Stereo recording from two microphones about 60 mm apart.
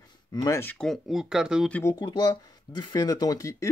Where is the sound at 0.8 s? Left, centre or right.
Centre.